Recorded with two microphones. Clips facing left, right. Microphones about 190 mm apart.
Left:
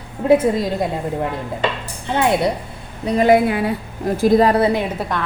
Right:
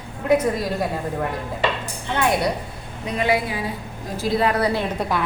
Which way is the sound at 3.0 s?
40° left (ahead or behind).